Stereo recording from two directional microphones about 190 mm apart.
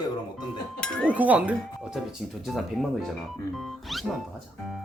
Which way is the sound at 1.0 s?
10° right (ahead or behind).